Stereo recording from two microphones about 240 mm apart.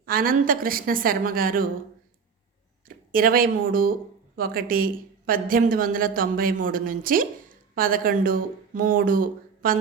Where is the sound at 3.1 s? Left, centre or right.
Right.